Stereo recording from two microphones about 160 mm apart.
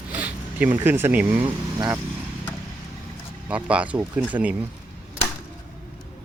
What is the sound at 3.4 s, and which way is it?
Speech, 10° right (ahead or behind).